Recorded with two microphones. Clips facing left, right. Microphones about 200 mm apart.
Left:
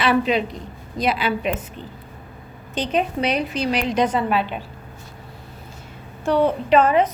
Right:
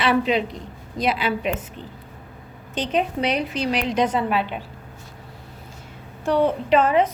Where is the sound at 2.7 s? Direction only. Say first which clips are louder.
Left 1 dB; 20° right (ahead or behind).